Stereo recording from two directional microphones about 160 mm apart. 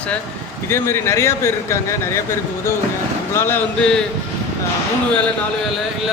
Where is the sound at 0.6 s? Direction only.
15° left (ahead or behind).